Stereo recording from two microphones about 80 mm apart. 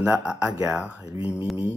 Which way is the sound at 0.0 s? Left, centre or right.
Centre.